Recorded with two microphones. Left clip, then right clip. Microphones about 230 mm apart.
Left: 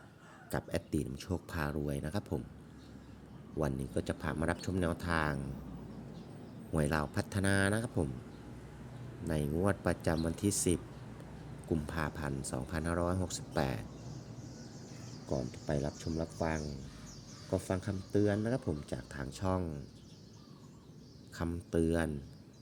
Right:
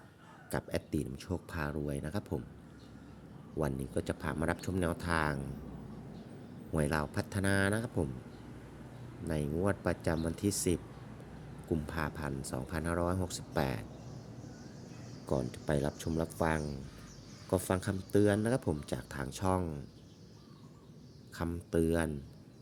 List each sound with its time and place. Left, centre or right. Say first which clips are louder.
0.5 s speech: even; centre
3.6 s speech: even; centre
6.7 s speech: even; centre
9.2 s speech: even; centre
15.3 s speech: right 3 dB; centre
21.3 s speech: right 1 dB; centre